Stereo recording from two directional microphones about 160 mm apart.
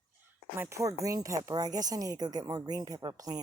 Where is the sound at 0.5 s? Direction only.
15° right (ahead or behind).